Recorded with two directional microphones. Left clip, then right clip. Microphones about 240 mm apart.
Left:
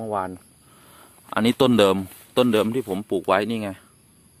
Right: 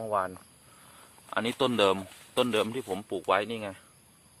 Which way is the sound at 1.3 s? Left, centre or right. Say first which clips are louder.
Left 9 dB; left.